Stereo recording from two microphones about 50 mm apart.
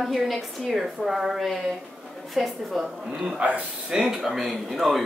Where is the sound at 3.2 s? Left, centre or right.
Right.